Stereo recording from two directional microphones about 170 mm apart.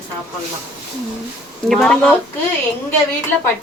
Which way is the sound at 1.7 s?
5° left (ahead or behind).